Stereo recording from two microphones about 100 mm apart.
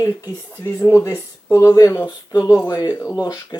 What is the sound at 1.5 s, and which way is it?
Speech, 30° left (ahead or behind).